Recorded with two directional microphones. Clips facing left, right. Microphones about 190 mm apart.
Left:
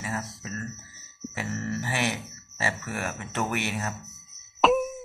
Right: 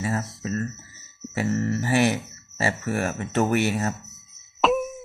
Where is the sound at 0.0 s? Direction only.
40° right (ahead or behind).